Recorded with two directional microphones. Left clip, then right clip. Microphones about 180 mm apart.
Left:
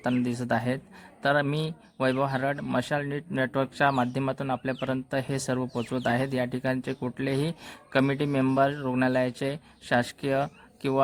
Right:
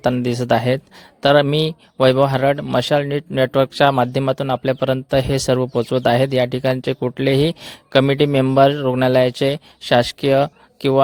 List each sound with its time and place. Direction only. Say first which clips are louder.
0.0 s a man's voice: right 10 dB; 45° right (ahead or behind)